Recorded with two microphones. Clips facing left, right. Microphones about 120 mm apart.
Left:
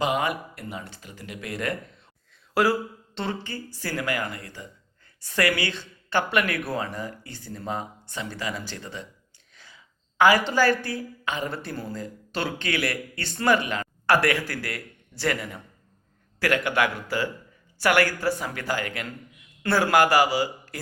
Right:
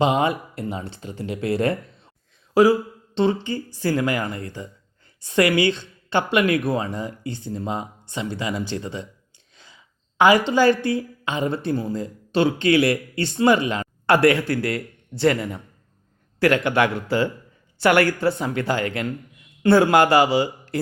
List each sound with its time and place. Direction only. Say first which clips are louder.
0.0 s speech: right 5 dB; 25° right (ahead or behind)
3.2 s a woman's voice: right 10 dB; 20° right (ahead or behind)